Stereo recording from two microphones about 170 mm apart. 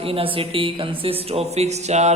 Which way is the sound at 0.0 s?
35° right (ahead or behind).